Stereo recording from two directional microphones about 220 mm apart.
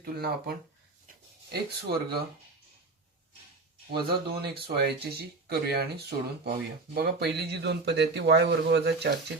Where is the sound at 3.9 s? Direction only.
45° right (ahead or behind).